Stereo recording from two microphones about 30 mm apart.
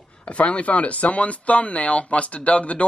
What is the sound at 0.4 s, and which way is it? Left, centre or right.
Speech, left.